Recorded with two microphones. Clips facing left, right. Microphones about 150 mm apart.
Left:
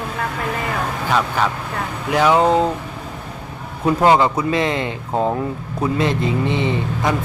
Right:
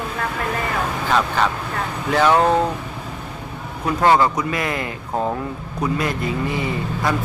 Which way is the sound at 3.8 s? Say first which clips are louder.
Left 2 dB; 20° left (ahead or behind).